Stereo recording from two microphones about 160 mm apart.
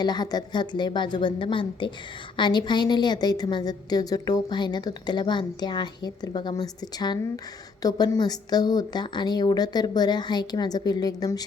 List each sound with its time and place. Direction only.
0.0 s a woman's voice: 25° left (ahead or behind)